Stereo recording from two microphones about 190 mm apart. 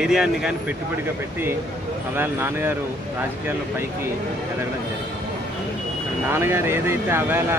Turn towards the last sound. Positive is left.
turn(degrees=-10)  # may be behind; listen again after turning